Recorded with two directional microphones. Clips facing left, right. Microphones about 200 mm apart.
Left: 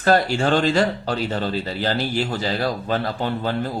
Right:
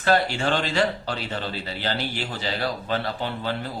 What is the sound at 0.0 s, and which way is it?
Speech, 40° left (ahead or behind).